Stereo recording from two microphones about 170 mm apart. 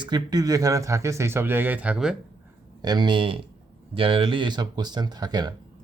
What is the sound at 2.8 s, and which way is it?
Speech, 25° right (ahead or behind).